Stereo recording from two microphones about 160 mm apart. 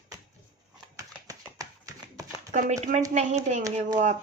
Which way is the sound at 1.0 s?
20° right (ahead or behind).